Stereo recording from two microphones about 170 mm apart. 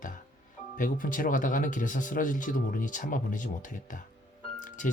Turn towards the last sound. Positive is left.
turn(degrees=50)  # may be behind; listen again after turning